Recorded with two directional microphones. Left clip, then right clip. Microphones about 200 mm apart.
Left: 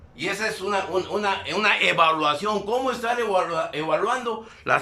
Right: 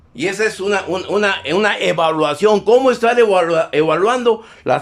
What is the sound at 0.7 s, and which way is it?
A man's voice, 50° right (ahead or behind).